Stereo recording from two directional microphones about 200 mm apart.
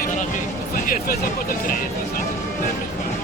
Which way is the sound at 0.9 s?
45° left (ahead or behind).